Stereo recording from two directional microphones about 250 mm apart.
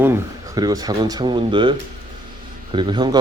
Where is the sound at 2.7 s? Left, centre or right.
Centre.